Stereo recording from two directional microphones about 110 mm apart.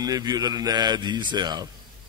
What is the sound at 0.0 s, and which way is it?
A man's voice, 35° right (ahead or behind).